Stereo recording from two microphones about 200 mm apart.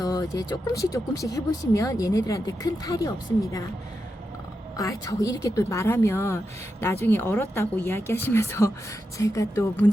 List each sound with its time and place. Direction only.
0.0 s speech: 15° left (ahead or behind)
4.8 s speech: 15° left (ahead or behind)